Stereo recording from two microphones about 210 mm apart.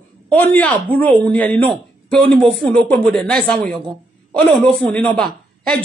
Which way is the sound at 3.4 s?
5° left (ahead or behind).